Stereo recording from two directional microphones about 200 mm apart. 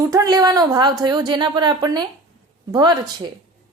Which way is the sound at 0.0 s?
15° right (ahead or behind).